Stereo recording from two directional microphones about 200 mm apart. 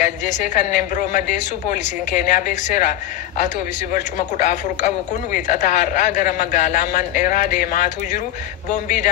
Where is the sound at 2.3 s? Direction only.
40° left (ahead or behind).